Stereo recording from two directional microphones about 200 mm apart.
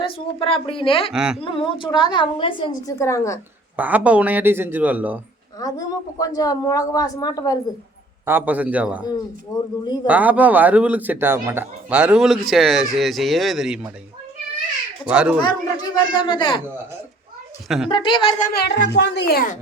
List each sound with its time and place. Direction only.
0.0 s a woman's voice: 30° left (ahead or behind)
1.1 s a man's voice: 5° right (ahead or behind)
1.4 s a woman's voice: 25° left (ahead or behind)
3.0 s a woman's voice: 15° left (ahead or behind)
3.8 s speech: 10° right (ahead or behind)
5.5 s a woman's voice: 20° left (ahead or behind)
8.2 s speech: 10° right (ahead or behind)
9.8 s a woman's voice: 20° left (ahead or behind)
10.1 s speech: 10° right (ahead or behind)
15.1 s a man's voice: 5° right (ahead or behind)
15.4 s a woman's voice: 20° left (ahead or behind)
17.8 s a woman's voice: 25° left (ahead or behind)
18.3 s speech: 50° left (ahead or behind)